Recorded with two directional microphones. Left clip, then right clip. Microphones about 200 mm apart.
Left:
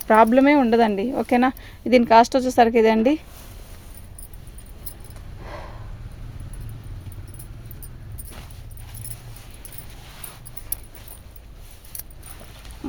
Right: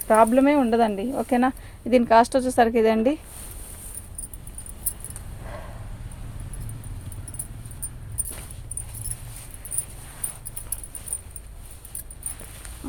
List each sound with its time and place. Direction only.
0.1 s speech: 45° left (ahead or behind)